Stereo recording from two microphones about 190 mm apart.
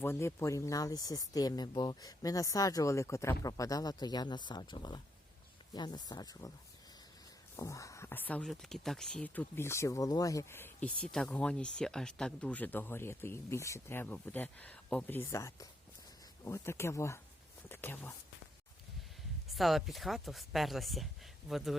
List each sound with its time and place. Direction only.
0.0 s speech: 15° left (ahead or behind)
7.5 s speech: 15° left (ahead or behind)
19.5 s speech: centre (ahead or behind)